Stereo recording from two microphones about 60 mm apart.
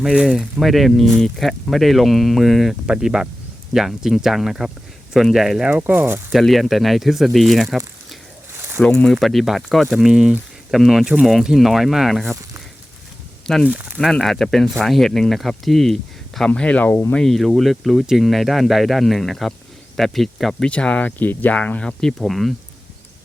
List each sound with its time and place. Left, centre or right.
0.0 s speech: centre
0.6 s speech: centre
2.8 s speech: centre
5.8 s speech: right
6.3 s speech: centre
8.5 s a sound: right
8.8 s speech: centre
9.1 s speech: centre
13.7 s speech: right
14.0 s speech: centre
16.6 s speech: left
17.2 s speech: centre
20.7 s speech: left; by 22.5 s centre